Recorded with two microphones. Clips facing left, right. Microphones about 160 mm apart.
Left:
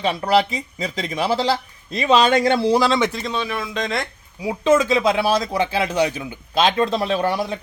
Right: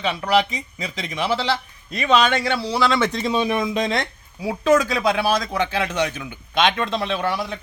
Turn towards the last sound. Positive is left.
turn(degrees=40)  # may be behind; listen again after turning